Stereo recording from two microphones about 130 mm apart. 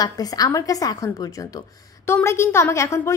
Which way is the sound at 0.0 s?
30° left (ahead or behind).